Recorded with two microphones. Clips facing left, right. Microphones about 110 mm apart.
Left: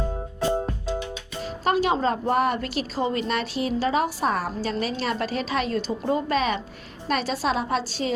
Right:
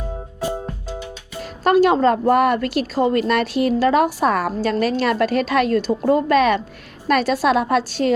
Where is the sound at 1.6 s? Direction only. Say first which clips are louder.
Right 8 dB; 50° right (ahead or behind).